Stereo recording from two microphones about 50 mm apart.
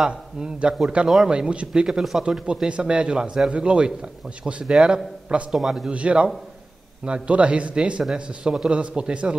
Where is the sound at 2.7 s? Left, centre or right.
Right.